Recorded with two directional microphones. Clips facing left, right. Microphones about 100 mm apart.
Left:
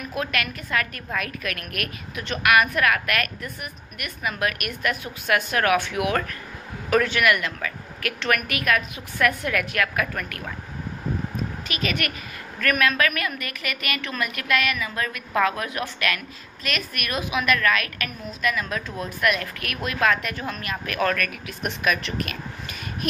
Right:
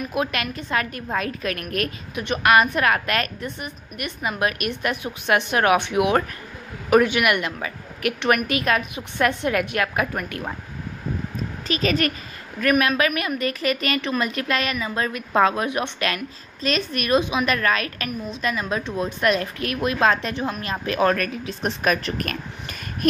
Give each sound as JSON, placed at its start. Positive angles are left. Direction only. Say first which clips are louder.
{"t": 0.1, "sound": "a woman's voice", "louder": "even", "side_deg": -20}
{"t": 11.6, "sound": "a woman's voice", "louder": "right 8 dB", "side_deg": -35}
{"t": 12.5, "sound": "a woman's voice", "louder": "right 3 dB", "side_deg": -20}
{"t": 13.4, "sound": "a woman's voice", "louder": "right 9 dB", "side_deg": -30}